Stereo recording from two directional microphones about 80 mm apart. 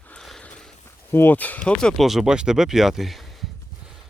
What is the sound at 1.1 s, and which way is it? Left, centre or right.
Speech, left.